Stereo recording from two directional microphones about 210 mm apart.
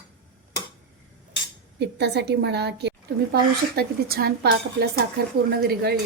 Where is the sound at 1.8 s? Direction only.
55° right (ahead or behind).